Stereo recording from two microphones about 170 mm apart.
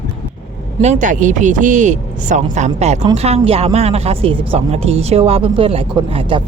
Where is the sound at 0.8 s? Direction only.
45° right (ahead or behind).